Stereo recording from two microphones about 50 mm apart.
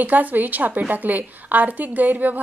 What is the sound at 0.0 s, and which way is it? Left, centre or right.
A woman's voice, right.